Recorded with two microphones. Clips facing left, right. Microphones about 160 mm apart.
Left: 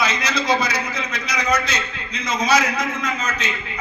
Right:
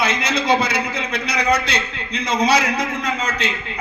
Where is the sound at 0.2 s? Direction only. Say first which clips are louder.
Right 2 dB; 25° right (ahead or behind).